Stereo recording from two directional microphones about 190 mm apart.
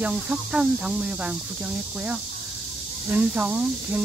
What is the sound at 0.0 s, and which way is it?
Speech, 5° right (ahead or behind).